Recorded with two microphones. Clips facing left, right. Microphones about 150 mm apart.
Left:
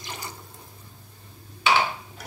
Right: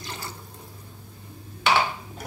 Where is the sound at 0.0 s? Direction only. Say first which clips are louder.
Right 1 dB; 15° left (ahead or behind).